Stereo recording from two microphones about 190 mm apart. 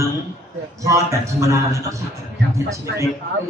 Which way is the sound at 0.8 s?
15° right (ahead or behind).